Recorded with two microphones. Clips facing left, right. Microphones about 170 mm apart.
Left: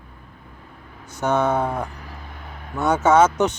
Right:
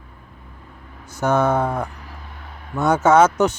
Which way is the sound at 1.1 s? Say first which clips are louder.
Right 2 dB; 10° right (ahead or behind).